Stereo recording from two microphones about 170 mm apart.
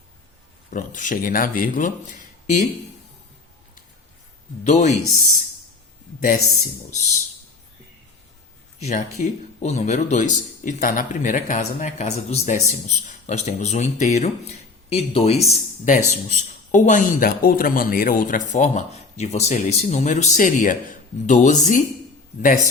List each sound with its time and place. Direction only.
0.7 s speech: 50° left (ahead or behind)
4.6 s speech: 45° left (ahead or behind)
6.9 s speech: 40° left (ahead or behind)
8.8 s speech: 40° left (ahead or behind)